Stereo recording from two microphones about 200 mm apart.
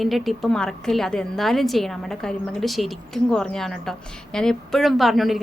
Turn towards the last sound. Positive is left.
turn(degrees=0)  # may be behind; listen again after turning